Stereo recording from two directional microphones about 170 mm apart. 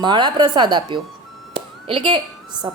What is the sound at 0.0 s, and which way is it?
A woman's voice, 25° right (ahead or behind).